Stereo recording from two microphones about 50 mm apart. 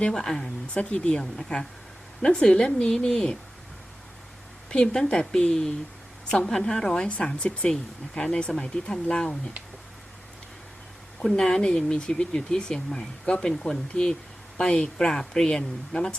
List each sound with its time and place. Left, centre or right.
0.0 s speech: centre
0.7 s speech: left
4.7 s a woman's voice: centre
11.3 s speech: centre